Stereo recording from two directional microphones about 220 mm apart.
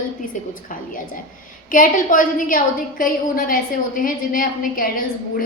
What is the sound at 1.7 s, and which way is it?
A woman's voice, 40° left (ahead or behind).